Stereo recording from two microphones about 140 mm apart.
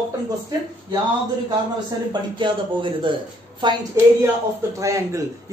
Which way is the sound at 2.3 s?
35° right (ahead or behind).